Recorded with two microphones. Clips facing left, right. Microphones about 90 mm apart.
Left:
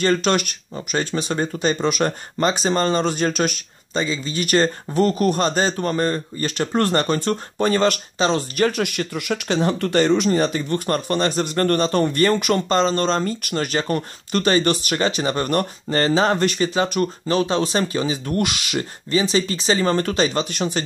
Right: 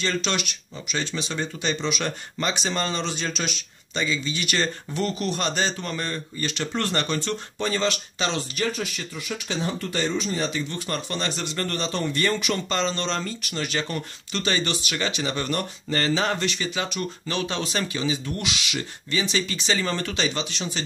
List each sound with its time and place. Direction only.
0.0 s speech: 50° left (ahead or behind)